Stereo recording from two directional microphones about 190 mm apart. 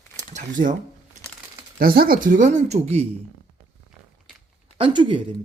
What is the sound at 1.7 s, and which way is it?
Speech, 50° right (ahead or behind).